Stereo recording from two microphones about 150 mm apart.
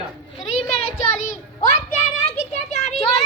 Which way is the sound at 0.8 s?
55° left (ahead or behind).